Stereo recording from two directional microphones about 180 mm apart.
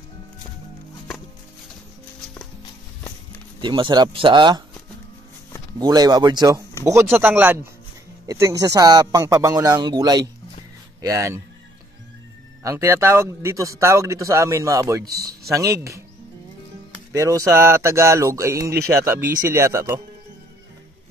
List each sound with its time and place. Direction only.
3.6 s speech: 25° right (ahead or behind)
5.8 s speech: 20° right (ahead or behind)
12.6 s speech: 15° right (ahead or behind)
17.1 s speech: 15° right (ahead or behind)